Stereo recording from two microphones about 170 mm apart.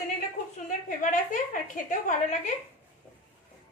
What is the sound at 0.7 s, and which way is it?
A woman's voice, 50° left (ahead or behind).